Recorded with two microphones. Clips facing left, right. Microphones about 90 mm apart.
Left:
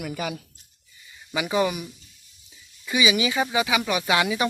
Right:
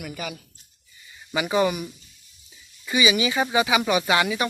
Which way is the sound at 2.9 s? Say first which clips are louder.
Right 1 dB; centre (ahead or behind).